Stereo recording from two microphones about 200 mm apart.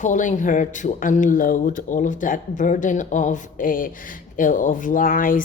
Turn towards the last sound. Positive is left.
turn(degrees=45)  # may be behind; listen again after turning